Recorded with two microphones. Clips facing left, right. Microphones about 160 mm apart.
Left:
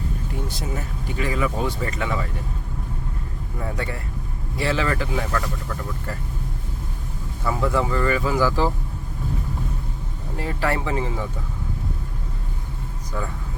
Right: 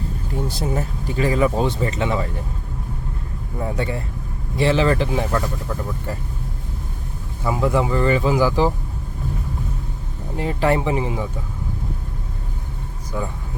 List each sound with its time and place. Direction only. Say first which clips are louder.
0.4 s speech: right 6 dB; 35° right (ahead or behind)
3.6 s speech: right 5 dB; 25° right (ahead or behind)
7.4 s speech: right 3 dB; 15° right (ahead or behind)
10.3 s speech: right 5 dB; 20° right (ahead or behind)
13.1 s speech: right 3 dB; 15° right (ahead or behind)